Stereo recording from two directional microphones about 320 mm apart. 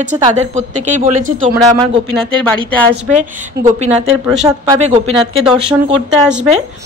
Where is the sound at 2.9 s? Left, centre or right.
Right.